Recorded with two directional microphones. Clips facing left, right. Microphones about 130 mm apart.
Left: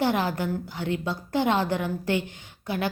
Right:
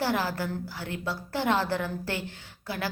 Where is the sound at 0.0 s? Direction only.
20° left (ahead or behind).